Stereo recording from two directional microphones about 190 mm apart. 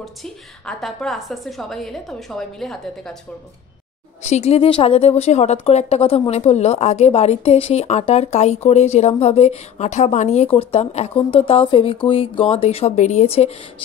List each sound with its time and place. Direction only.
0.0 s a woman's voice: centre (ahead or behind)
4.2 s speech: 35° left (ahead or behind)